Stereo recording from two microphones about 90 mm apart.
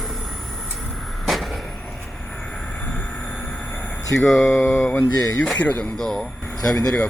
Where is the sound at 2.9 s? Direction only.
15° left (ahead or behind).